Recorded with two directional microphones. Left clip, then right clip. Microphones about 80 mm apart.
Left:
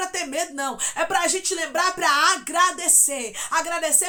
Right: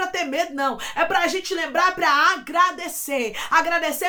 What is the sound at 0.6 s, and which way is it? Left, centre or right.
A woman's voice, left.